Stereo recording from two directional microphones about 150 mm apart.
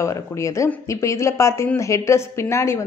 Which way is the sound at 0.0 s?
20° left (ahead or behind).